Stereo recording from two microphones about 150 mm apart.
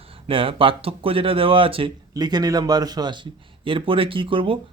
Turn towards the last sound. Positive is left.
turn(degrees=-35)  # may be behind; listen again after turning